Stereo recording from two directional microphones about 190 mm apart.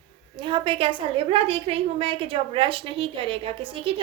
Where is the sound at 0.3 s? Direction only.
25° right (ahead or behind).